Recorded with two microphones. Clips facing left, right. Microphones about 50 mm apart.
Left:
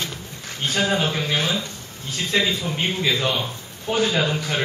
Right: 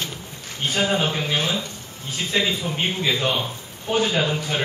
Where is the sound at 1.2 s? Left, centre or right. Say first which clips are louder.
Even; centre.